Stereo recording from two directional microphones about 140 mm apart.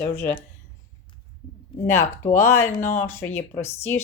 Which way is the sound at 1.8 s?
20° left (ahead or behind).